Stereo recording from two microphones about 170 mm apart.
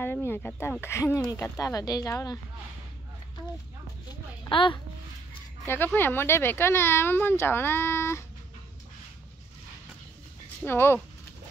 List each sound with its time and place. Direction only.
0.0 s speech: 15° left (ahead or behind)
4.5 s a child's voice: 30° left (ahead or behind)
5.9 s speech: 15° left (ahead or behind)
10.6 s speech: 15° left (ahead or behind)